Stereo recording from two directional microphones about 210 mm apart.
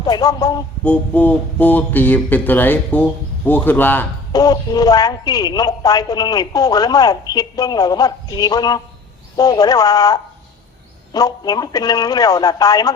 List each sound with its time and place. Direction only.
0.0 s speech: 20° left (ahead or behind)